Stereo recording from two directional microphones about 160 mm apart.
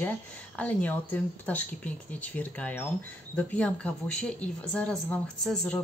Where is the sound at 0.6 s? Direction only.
10° left (ahead or behind).